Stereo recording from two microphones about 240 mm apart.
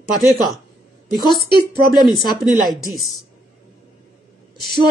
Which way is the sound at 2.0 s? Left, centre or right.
Centre.